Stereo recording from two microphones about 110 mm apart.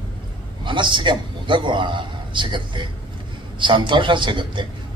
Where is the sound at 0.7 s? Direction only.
45° right (ahead or behind).